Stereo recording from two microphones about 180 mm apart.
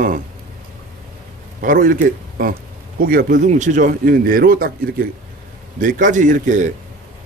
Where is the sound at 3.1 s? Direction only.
50° right (ahead or behind).